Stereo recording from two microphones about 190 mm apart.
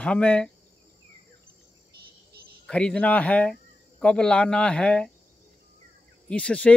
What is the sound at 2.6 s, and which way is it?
Speech, 5° left (ahead or behind).